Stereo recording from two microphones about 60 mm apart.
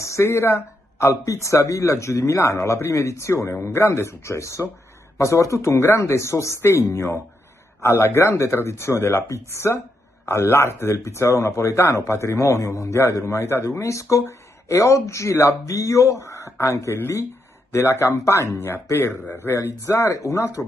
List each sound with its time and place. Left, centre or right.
0.0 s a man's voice: left
19.4 s speech: left
19.9 s speech: left